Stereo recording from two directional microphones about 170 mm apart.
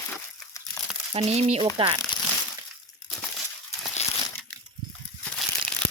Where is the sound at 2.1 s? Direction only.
25° left (ahead or behind).